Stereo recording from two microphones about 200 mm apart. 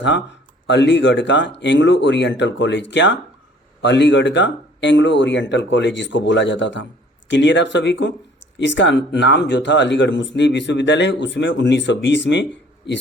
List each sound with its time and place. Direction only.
0.0 s speech: 60° left (ahead or behind)